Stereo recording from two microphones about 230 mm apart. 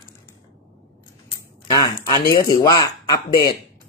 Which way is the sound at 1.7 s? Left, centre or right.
Centre.